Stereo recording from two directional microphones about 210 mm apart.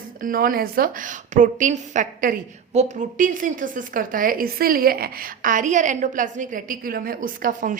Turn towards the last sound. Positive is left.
turn(degrees=-40)  # may be behind; listen again after turning